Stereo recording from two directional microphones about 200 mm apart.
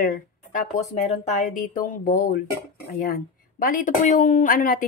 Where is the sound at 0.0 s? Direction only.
50° left (ahead or behind).